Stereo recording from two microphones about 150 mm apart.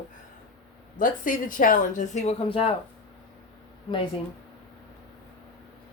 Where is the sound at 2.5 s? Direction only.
35° left (ahead or behind).